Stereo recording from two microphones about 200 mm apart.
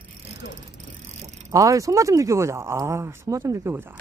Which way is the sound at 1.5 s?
15° right (ahead or behind).